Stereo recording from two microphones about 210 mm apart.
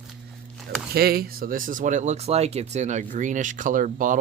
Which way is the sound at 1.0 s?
45° right (ahead or behind).